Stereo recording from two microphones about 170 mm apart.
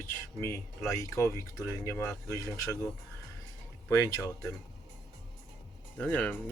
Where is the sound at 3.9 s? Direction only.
15° left (ahead or behind).